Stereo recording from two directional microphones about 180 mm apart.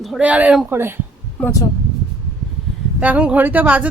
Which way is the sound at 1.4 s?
20° left (ahead or behind).